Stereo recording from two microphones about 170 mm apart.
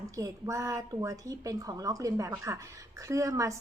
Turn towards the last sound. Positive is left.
turn(degrees=-20)  # may be behind; listen again after turning